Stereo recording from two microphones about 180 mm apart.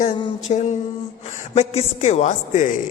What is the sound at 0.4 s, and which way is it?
A man's voice, 40° left (ahead or behind).